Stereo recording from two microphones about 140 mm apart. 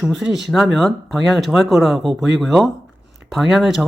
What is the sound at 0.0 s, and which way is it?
Speech, centre (ahead or behind).